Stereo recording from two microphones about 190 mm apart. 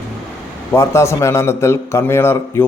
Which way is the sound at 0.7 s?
15° left (ahead or behind).